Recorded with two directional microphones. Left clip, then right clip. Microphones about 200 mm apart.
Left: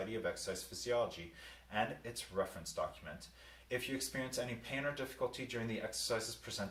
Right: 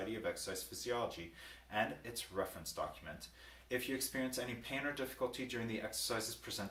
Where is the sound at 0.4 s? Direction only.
15° right (ahead or behind).